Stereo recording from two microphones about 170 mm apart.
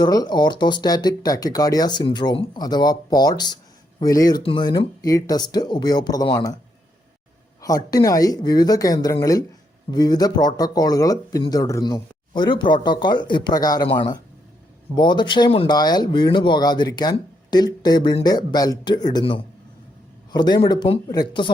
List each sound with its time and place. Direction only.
0.0 s speech: 25° left (ahead or behind)
7.6 s speech: 20° left (ahead or behind)